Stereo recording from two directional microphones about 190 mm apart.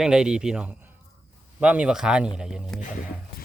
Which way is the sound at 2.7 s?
45° left (ahead or behind).